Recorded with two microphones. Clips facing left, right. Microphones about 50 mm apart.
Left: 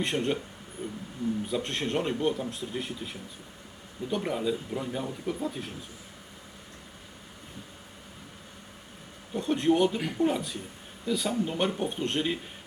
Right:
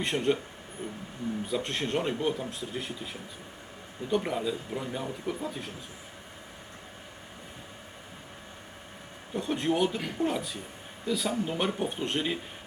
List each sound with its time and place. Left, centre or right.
0.0 s speech: centre
0.8 s speech: right
1.5 s speech: centre
9.3 s speech: centre